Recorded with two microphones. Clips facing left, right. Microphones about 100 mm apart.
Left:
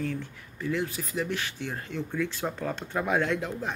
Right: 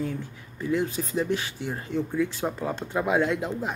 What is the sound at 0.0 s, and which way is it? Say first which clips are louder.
Speech: right 1 dB; 20° right (ahead or behind).